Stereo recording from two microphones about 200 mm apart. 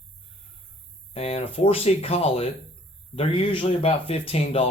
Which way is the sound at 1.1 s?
30° left (ahead or behind).